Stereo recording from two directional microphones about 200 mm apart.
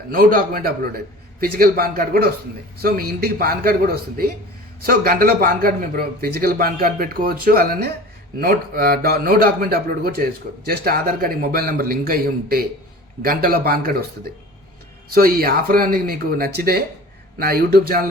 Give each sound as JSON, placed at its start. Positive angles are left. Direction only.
{"t": 0.1, "sound": "a man's voice", "side_deg": -45}